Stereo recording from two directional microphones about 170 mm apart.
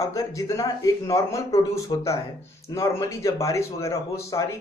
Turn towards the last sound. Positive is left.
turn(degrees=15)  # may be behind; listen again after turning